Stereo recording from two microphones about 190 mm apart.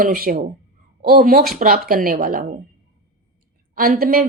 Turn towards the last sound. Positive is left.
turn(degrees=-50)  # may be behind; listen again after turning